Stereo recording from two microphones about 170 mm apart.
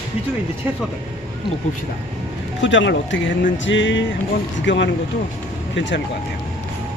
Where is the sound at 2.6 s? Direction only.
90° left.